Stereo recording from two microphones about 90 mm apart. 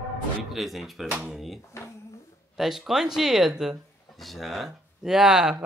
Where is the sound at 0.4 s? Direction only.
Centre (ahead or behind).